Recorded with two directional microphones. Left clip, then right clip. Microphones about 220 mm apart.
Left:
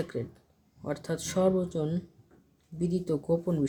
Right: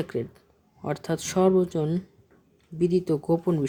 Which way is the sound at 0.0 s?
30° right (ahead or behind).